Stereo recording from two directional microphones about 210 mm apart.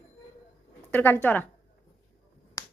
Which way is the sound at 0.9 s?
10° left (ahead or behind).